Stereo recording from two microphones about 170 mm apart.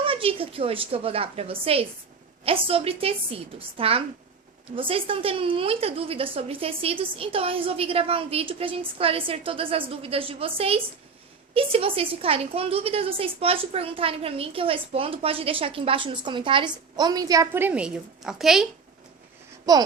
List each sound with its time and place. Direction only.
0.0 s a woman's voice: 35° right (ahead or behind); by 18.7 s centre (ahead or behind)
19.7 s speech: 20° right (ahead or behind)